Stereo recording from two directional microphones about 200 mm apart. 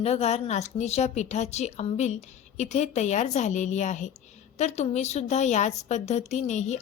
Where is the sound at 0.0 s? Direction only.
30° left (ahead or behind).